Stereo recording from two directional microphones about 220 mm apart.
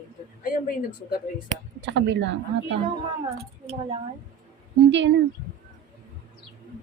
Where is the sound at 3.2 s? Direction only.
25° right (ahead or behind).